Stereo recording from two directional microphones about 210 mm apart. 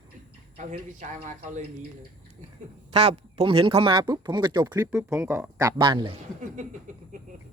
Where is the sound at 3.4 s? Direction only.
25° right (ahead or behind).